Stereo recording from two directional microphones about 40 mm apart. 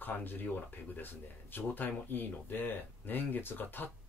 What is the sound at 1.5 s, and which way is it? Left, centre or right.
Speech, left.